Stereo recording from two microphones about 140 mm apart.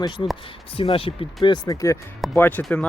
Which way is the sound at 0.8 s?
40° left (ahead or behind).